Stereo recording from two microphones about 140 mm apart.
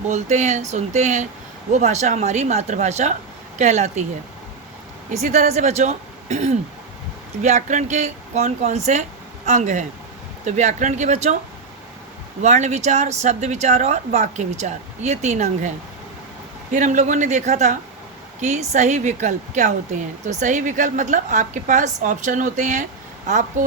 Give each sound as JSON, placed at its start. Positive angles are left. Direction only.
{"t": 0.1, "sound": "speech", "side_deg": -55}
{"t": 5.2, "sound": "speech", "side_deg": -55}
{"t": 12.4, "sound": "speech", "side_deg": -55}
{"t": 16.7, "sound": "speech", "side_deg": -60}